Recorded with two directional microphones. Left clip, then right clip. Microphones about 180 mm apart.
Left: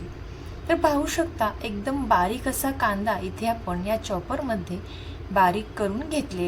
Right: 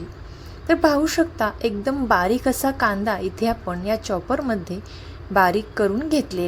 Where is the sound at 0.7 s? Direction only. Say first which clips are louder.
Right 4 dB; 35° right (ahead or behind).